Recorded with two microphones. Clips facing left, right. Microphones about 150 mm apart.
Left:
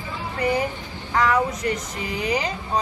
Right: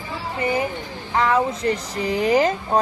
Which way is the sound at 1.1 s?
25° right (ahead or behind).